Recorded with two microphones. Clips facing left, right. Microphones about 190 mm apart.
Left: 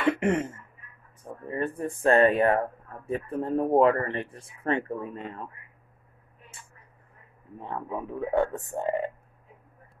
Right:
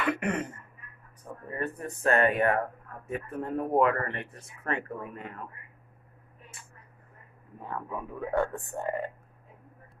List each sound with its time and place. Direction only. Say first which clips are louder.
0.2 s speech: left 5 dB; 25° left (ahead or behind)
7.6 s speech: left 3 dB; 25° left (ahead or behind)